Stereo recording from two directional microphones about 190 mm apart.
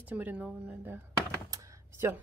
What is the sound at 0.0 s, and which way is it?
Speech, 10° right (ahead or behind).